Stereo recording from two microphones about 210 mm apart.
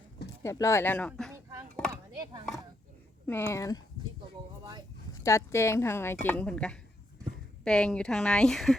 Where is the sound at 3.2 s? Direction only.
10° left (ahead or behind).